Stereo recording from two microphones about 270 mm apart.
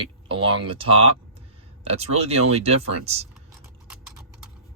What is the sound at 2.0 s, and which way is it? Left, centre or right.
Speech, right.